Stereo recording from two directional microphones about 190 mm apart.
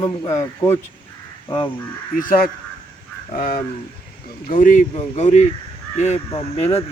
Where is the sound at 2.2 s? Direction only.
50° left (ahead or behind).